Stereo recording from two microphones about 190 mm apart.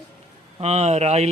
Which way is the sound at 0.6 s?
35° right (ahead or behind).